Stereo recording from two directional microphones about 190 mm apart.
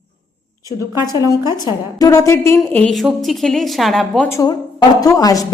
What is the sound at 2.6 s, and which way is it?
A woman's voice, 5° left (ahead or behind).